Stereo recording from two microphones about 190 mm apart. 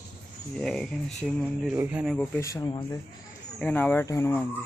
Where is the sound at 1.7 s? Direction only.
10° right (ahead or behind).